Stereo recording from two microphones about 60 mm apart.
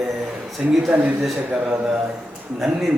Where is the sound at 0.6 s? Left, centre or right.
Centre.